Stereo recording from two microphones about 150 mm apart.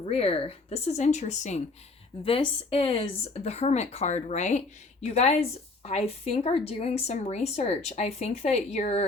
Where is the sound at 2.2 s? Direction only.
40° left (ahead or behind).